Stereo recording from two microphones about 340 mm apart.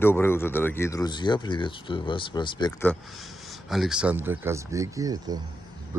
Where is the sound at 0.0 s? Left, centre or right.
Centre.